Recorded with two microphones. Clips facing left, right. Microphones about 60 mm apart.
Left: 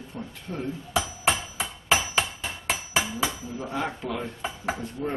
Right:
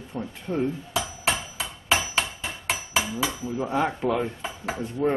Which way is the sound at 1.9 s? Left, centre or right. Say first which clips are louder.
Even; centre.